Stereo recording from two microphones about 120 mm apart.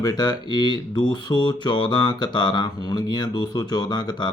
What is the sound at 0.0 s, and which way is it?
Speech, 35° left (ahead or behind).